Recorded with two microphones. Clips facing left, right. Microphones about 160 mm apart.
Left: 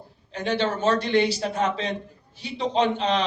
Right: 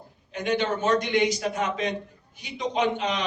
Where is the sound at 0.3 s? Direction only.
30° left (ahead or behind).